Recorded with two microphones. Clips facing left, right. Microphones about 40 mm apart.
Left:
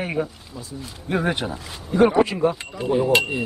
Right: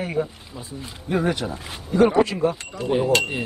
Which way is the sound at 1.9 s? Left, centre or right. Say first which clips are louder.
Even; centre.